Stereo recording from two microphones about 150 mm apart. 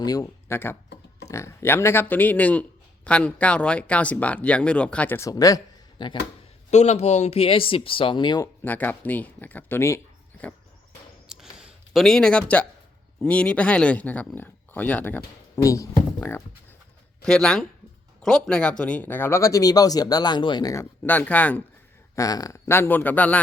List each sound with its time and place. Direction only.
0.0 s speech: 25° left (ahead or behind)
6.7 s speech: 45° left (ahead or behind); by 8.4 s 30° left (ahead or behind)
8.6 s speech: 10° left (ahead or behind)
11.3 s a sound: 5° right (ahead or behind)
13.2 s speech: 10° left (ahead or behind)
17.2 s speech: 5° left (ahead or behind); by 20.8 s 25° left (ahead or behind)
21.0 s speech: 10° left (ahead or behind)
22.1 s speech: 25° left (ahead or behind)